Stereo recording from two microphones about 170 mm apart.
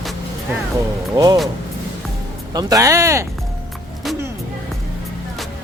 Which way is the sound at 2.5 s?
20° right (ahead or behind).